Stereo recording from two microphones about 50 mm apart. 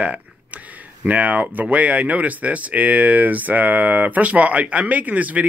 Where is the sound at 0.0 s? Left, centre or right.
Right.